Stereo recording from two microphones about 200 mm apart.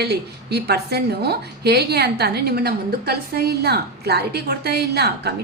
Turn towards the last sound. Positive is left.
turn(degrees=-55)  # may be behind; listen again after turning